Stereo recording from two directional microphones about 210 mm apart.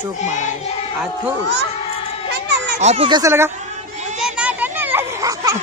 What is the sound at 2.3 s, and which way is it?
Children playing, 55° right (ahead or behind).